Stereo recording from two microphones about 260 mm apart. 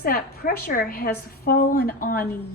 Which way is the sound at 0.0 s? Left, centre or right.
Left.